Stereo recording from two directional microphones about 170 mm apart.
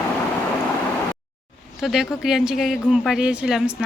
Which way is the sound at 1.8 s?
Centre (ahead or behind).